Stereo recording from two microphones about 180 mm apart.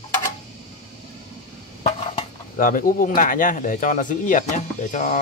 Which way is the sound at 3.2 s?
50° left (ahead or behind).